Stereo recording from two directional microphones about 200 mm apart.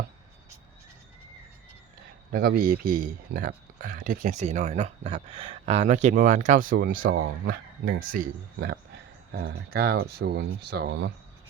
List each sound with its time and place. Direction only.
2.3 s speech: 50° right (ahead or behind)
7.0 s speech: 70° right (ahead or behind)
7.4 s speech: 45° right (ahead or behind)